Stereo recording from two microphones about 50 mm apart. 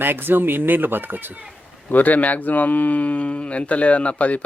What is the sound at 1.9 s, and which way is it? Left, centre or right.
Speech, left.